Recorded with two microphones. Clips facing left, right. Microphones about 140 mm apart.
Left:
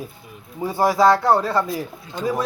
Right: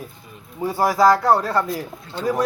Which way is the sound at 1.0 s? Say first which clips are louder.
Right 1 dB; 10° right (ahead or behind).